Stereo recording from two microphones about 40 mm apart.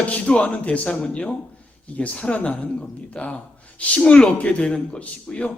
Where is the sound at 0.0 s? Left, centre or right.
Left.